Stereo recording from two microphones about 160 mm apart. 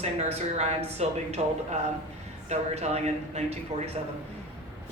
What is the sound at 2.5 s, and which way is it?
Speech, 40° right (ahead or behind).